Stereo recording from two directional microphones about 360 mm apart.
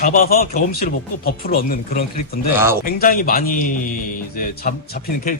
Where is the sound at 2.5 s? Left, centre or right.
Centre.